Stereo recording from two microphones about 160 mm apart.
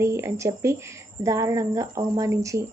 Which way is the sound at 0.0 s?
15° right (ahead or behind).